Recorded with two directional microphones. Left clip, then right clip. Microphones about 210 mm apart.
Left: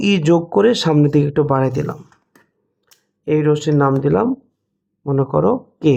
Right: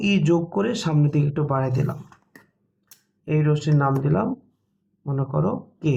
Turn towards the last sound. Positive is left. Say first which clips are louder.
# left 10 dB
turn(degrees=50)  # may be behind; listen again after turning